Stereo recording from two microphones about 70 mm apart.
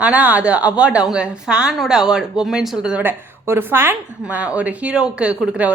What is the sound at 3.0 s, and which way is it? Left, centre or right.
Speech, right.